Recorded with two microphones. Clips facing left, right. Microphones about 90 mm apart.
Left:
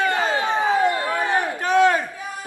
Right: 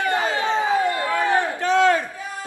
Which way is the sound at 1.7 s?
20° left (ahead or behind).